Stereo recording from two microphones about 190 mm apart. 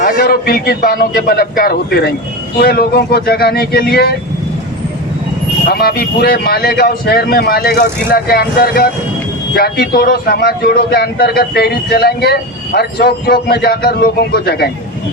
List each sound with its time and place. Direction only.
0.0 s a man's voice: 50° left (ahead or behind)
5.6 s speech: 55° left (ahead or behind)